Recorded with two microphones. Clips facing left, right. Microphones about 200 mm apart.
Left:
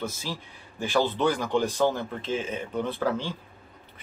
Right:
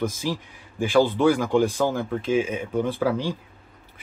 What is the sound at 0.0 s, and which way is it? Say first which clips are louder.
Speech: right 7 dB; 15° right (ahead or behind).